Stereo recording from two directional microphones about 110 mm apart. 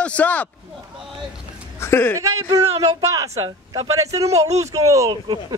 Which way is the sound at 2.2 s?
35° right (ahead or behind).